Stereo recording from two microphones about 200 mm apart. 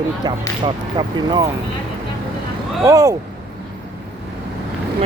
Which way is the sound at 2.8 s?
15° right (ahead or behind).